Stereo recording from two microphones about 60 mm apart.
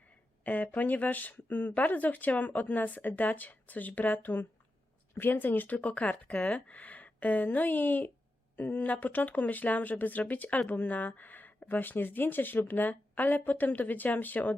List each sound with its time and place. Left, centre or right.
0.4 s speech: left